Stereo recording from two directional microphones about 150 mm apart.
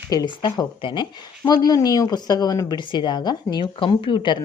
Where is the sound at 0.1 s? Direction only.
30° left (ahead or behind).